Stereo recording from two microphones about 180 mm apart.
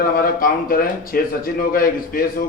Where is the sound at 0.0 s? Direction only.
50° left (ahead or behind).